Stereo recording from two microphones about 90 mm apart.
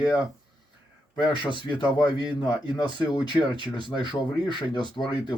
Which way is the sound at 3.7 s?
55° left (ahead or behind).